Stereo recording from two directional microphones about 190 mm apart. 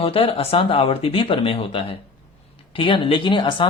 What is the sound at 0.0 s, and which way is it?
A woman's voice, 30° left (ahead or behind).